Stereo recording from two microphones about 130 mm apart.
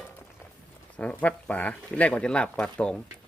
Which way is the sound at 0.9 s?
10° left (ahead or behind).